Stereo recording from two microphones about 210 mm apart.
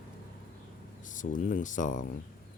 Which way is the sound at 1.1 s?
40° left (ahead or behind).